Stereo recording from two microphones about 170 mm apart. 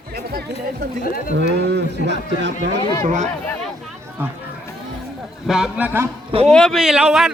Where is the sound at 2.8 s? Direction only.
25° left (ahead or behind).